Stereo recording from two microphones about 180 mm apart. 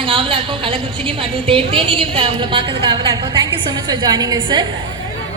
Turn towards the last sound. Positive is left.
turn(degrees=-25)  # may be behind; listen again after turning